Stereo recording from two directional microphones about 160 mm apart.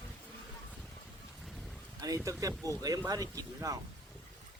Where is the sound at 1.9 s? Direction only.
20° right (ahead or behind).